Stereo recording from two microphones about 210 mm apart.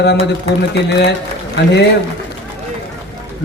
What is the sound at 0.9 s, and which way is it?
Speech, 55° left (ahead or behind).